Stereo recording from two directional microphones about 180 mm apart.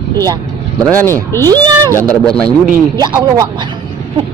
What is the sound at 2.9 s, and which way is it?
Speech, 20° right (ahead or behind).